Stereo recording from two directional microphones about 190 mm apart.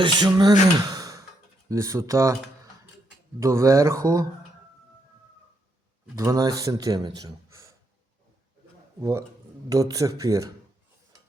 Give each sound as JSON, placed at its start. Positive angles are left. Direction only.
{"t": 0.0, "sound": "speech", "side_deg": -25}
{"t": 0.8, "sound": "sigh", "side_deg": -20}
{"t": 1.7, "sound": "speech", "side_deg": -15}
{"t": 3.4, "sound": "speech", "side_deg": -15}
{"t": 6.1, "sound": "speech", "side_deg": -20}
{"t": 7.2, "sound": "a sound", "side_deg": -20}
{"t": 9.0, "sound": "speech", "side_deg": -15}